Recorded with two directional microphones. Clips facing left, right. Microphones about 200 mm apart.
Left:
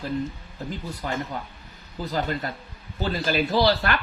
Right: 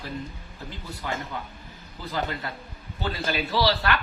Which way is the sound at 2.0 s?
40° left (ahead or behind).